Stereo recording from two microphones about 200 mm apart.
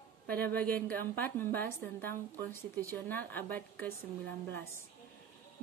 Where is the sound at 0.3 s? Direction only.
10° left (ahead or behind).